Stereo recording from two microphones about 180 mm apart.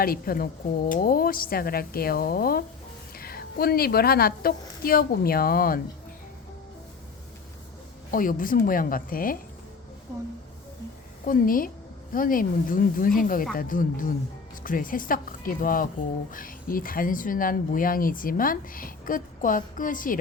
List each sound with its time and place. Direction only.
0.0 s a woman's voice: 55° left (ahead or behind)
8.1 s speech: 50° left (ahead or behind)
11.3 s speech: 50° left (ahead or behind)